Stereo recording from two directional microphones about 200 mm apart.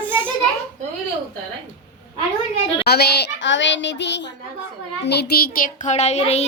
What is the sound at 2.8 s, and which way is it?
A child's voice, 55° left (ahead or behind).